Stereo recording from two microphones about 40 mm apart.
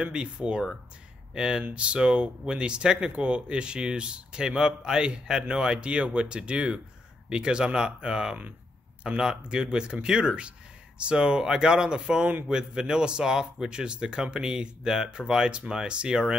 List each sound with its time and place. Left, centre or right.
0.0 s speech: right